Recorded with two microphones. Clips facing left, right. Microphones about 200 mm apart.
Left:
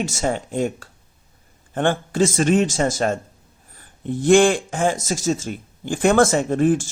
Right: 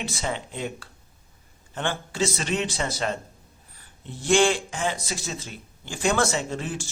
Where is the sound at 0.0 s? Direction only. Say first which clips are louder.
Left 7 dB; 45° left (ahead or behind).